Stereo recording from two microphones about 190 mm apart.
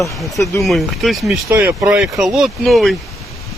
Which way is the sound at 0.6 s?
Centre (ahead or behind).